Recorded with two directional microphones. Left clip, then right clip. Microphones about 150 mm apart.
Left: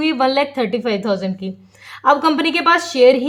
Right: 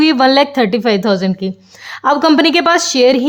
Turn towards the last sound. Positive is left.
turn(degrees=-55)  # may be behind; listen again after turning